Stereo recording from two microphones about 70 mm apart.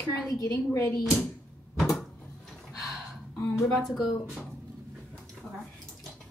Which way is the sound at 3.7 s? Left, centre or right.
Centre.